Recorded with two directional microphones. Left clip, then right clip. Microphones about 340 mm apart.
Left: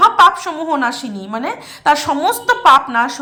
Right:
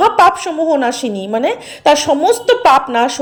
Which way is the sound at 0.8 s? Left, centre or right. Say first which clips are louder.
Right 3 dB; centre.